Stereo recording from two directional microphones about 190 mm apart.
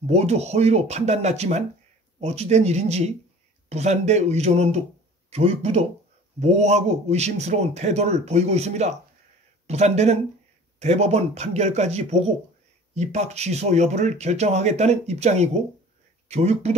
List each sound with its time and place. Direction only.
0.0 s speech: 35° right (ahead or behind)